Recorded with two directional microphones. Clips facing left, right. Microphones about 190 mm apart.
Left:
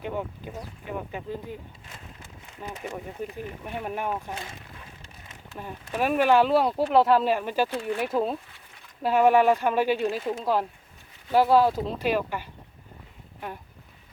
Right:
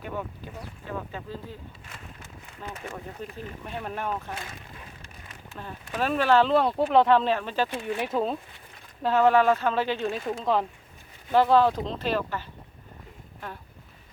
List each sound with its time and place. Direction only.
0.0 s speech: 20° left (ahead or behind)
2.6 s speech: 15° left (ahead or behind)